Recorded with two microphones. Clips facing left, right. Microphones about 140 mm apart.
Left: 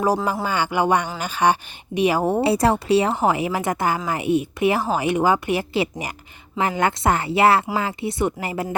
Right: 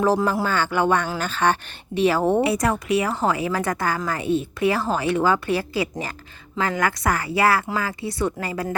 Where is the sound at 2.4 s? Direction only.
30° left (ahead or behind).